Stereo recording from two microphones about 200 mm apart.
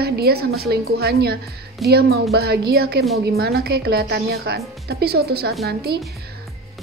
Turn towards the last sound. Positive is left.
turn(degrees=-50)  # may be behind; listen again after turning